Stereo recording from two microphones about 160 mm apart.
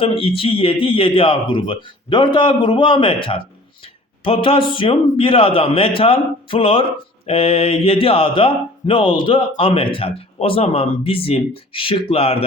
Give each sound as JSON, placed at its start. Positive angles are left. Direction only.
{"t": 0.0, "sound": "speech", "side_deg": 35}